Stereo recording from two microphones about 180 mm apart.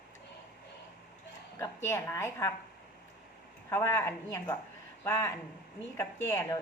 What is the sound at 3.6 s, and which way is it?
A woman's voice, 15° left (ahead or behind).